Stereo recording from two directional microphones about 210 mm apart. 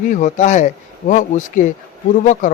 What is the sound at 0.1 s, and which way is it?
Speech, 35° left (ahead or behind).